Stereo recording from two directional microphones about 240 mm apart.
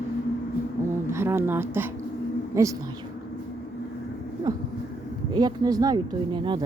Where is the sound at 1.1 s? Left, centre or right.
Centre.